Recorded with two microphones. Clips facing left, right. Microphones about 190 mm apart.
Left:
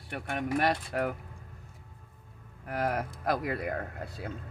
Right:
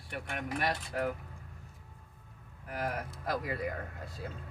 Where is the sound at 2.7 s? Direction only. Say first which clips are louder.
Left 5 dB; 75° left (ahead or behind).